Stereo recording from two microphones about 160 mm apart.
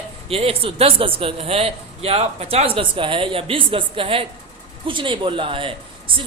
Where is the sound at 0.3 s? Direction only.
35° right (ahead or behind).